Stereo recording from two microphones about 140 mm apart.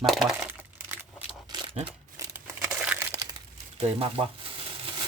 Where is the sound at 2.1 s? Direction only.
20° right (ahead or behind).